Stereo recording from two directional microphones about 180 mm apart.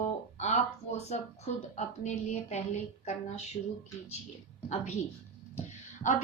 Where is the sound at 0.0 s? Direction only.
40° left (ahead or behind).